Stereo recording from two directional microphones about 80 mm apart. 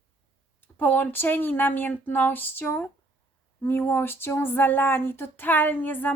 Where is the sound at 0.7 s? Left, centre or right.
Left.